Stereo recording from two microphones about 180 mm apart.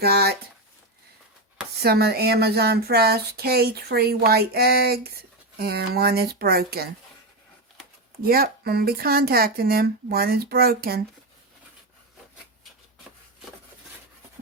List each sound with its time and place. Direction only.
0.0 s speech: 65° right (ahead or behind)
1.8 s speech: 60° right (ahead or behind)
8.2 s speech: 60° right (ahead or behind)